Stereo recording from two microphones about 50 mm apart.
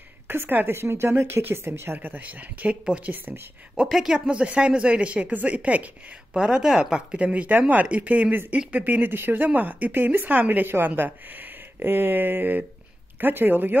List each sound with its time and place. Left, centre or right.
0.3 s a woman's voice: right
0.7 s speech: right
1.1 s speech: right
2.0 s speech: right
3.1 s speech: right
3.7 s a woman's voice: centre
4.3 s speech: centre
6.4 s speech: centre; by 13.7 s right